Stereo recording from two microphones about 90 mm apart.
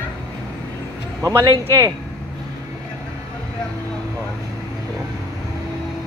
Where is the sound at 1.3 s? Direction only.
25° right (ahead or behind).